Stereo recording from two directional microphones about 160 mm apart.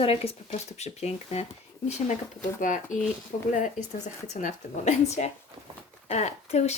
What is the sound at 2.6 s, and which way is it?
Speech, 55° left (ahead or behind).